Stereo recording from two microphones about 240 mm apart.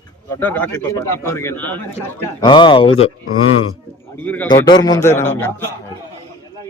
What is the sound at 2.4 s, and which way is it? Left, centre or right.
Speech, centre.